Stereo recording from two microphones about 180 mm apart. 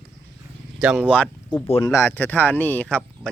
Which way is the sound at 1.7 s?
35° left (ahead or behind).